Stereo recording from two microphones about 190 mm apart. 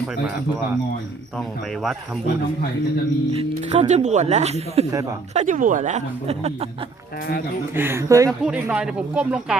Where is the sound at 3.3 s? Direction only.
30° right (ahead or behind).